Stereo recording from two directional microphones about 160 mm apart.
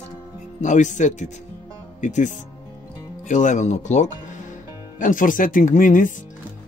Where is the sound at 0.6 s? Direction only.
50° left (ahead or behind).